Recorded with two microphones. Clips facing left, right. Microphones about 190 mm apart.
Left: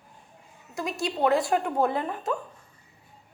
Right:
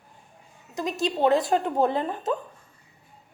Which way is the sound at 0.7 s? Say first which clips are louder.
Right 3 dB; 20° right (ahead or behind).